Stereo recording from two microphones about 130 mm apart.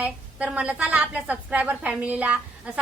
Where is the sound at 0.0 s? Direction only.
10° right (ahead or behind).